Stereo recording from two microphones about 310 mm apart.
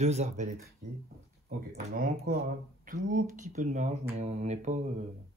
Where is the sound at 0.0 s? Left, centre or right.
Right.